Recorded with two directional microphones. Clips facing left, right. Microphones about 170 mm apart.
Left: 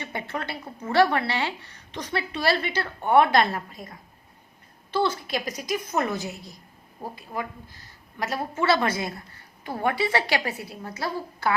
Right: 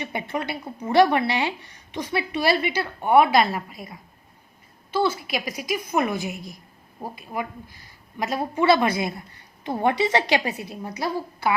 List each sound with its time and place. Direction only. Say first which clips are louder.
0.0 s a woman's voice: right 4 dB; 15° right (ahead or behind)